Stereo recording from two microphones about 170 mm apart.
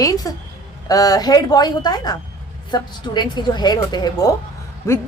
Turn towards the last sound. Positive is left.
turn(degrees=15)  # may be behind; listen again after turning